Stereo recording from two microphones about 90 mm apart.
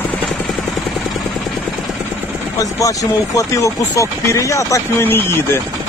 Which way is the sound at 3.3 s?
40° left (ahead or behind).